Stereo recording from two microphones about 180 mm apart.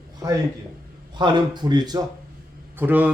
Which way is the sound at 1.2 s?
25° right (ahead or behind).